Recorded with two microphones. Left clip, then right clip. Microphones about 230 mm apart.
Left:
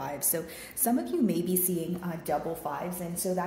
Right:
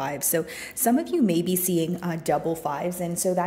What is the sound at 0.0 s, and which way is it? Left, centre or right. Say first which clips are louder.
A woman's voice: right 7 dB; right.